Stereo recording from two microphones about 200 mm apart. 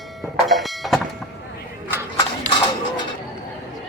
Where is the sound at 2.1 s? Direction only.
25° left (ahead or behind).